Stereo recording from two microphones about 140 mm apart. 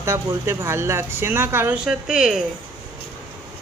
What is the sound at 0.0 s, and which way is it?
Speech, 20° right (ahead or behind).